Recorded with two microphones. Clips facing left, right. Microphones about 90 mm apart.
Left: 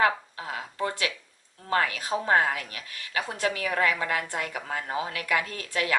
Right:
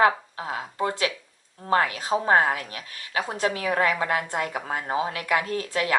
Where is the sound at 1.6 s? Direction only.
30° right (ahead or behind).